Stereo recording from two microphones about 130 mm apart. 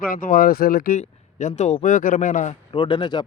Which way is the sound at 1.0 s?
65° left (ahead or behind).